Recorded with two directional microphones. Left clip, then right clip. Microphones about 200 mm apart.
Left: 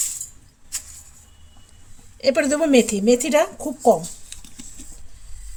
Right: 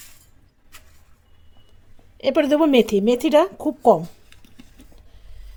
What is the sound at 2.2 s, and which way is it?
Speech, 30° right (ahead or behind).